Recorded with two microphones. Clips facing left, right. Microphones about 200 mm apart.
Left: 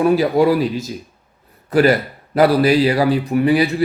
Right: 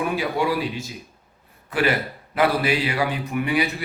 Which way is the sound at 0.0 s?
40° left (ahead or behind).